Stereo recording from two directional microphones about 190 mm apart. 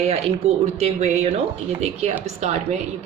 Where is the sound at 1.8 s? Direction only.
35° right (ahead or behind).